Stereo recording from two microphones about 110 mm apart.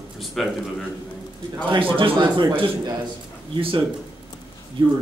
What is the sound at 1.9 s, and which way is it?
Speech, 50° right (ahead or behind).